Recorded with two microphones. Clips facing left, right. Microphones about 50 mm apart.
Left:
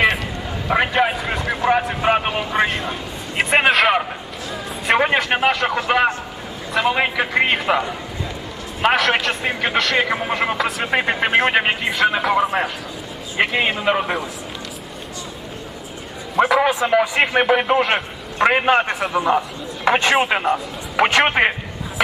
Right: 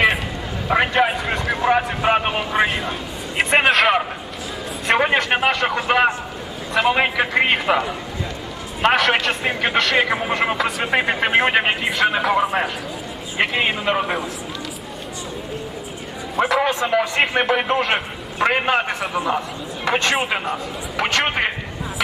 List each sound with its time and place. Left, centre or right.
0.7 s a man's voice: centre
16.3 s a man's voice: centre